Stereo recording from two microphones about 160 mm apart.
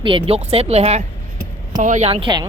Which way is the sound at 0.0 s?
30° right (ahead or behind).